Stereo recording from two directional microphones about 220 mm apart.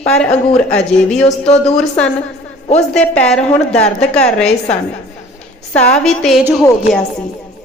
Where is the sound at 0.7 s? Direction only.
5° left (ahead or behind).